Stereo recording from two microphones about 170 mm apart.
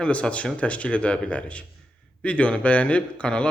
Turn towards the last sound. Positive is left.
turn(degrees=5)  # may be behind; listen again after turning